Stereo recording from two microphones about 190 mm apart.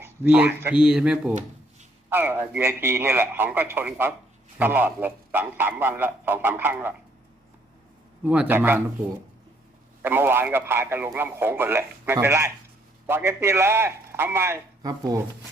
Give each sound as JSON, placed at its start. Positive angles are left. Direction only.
{"t": 0.0, "sound": "speech", "side_deg": -10}
{"t": 1.3, "sound": "a sound", "side_deg": -40}
{"t": 2.0, "sound": "speech", "side_deg": -10}
{"t": 8.2, "sound": "speech", "side_deg": -10}
{"t": 10.0, "sound": "speech", "side_deg": -10}